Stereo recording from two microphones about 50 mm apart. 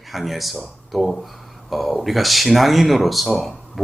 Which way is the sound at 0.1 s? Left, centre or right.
Centre.